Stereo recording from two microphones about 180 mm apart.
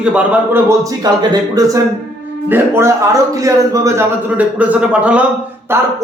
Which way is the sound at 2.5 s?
10° right (ahead or behind).